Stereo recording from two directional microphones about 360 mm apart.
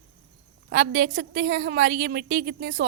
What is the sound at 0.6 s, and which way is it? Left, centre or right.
A woman's voice, right.